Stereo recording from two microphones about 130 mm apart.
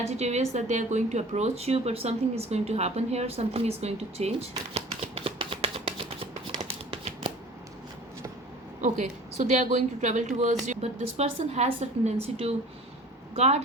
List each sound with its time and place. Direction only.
0.1 s speech: 60° right (ahead or behind)
8.8 s speech: 70° right (ahead or behind)
10.7 s speech: 55° right (ahead or behind)